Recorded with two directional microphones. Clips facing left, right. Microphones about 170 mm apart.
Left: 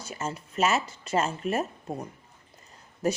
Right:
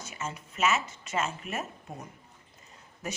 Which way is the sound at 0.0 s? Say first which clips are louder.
Left 4 dB; 35° left (ahead or behind).